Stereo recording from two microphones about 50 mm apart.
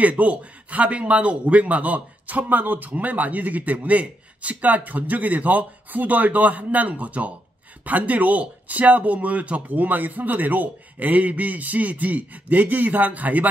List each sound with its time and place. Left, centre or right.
0.0 s speech: right